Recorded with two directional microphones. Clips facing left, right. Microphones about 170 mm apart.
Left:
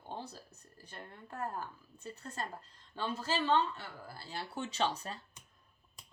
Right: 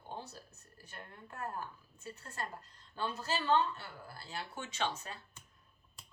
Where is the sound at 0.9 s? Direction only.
30° left (ahead or behind).